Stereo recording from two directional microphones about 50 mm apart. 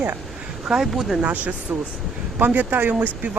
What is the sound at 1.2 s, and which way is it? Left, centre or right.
Speech, right.